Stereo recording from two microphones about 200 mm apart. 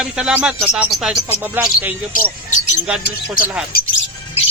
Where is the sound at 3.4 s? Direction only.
45° left (ahead or behind).